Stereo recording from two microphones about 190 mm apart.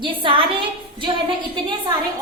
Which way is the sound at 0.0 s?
25° right (ahead or behind).